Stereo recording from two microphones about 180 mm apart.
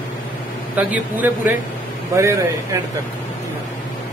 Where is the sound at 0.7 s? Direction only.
10° right (ahead or behind).